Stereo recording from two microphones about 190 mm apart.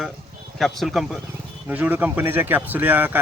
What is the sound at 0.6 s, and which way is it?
Speech, centre (ahead or behind).